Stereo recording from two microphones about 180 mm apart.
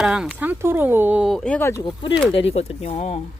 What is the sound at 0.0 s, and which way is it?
Speech, 5° right (ahead or behind).